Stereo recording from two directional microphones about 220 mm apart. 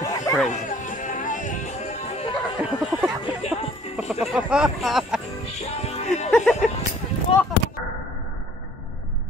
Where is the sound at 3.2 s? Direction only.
25° left (ahead or behind).